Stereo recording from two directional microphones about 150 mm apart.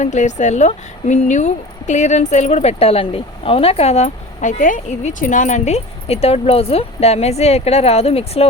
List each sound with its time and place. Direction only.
0.0 s speech: 50° left (ahead or behind)